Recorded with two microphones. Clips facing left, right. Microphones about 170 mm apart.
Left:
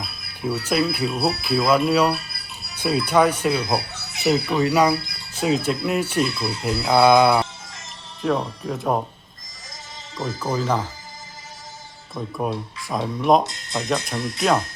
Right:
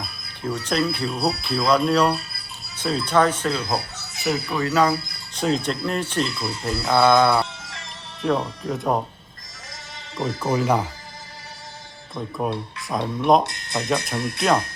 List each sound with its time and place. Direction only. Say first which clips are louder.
0.4 s speech: left 2 dB; 10° left (ahead or behind)
4.2 s speech: left 4 dB; 20° left (ahead or behind)
8.2 s speech: even; centre (ahead or behind)
10.5 s speech: right 2 dB; 10° right (ahead or behind)
12.4 s speech: even; centre (ahead or behind)
13.4 s speech: even; 60° right (ahead or behind)
13.7 s speech: even; centre (ahead or behind)